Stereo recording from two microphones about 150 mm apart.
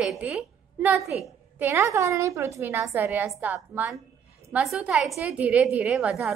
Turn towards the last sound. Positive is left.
turn(degrees=-5)  # may be behind; listen again after turning